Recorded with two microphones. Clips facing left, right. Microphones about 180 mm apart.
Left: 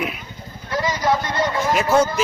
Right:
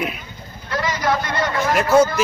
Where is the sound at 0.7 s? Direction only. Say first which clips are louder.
Left 1 dB; 15° left (ahead or behind).